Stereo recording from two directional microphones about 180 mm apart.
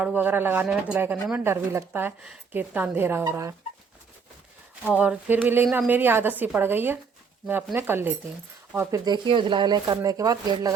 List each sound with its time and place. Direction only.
0.0 s speech: 10° right (ahead or behind)
4.8 s speech: 5° right (ahead or behind)